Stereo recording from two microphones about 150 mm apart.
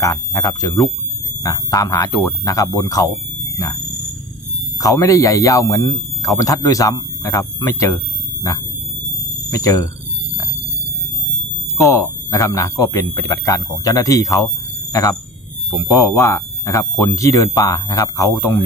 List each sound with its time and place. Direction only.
0.0 s speech: 25° left (ahead or behind)
4.7 s speech: 20° left (ahead or behind)
9.5 s speech: 25° left (ahead or behind)
11.8 s speech: 20° left (ahead or behind)